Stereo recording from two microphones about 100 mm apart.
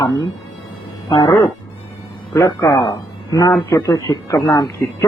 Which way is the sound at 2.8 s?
40° left (ahead or behind).